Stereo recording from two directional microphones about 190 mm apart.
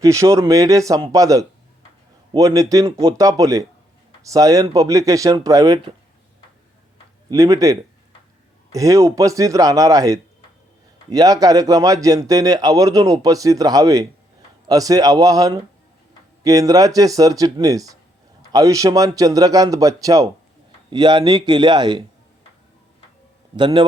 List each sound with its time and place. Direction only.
0.0 s speech: 15° right (ahead or behind)
7.3 s a man's voice: 15° right (ahead or behind)
23.6 s a man's voice: 25° right (ahead or behind)